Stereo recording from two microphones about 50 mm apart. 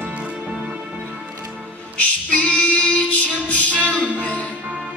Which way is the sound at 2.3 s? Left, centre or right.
Left.